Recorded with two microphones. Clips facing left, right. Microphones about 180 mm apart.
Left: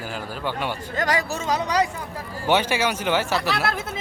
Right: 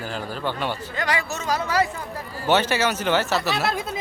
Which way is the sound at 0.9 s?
45° left (ahead or behind).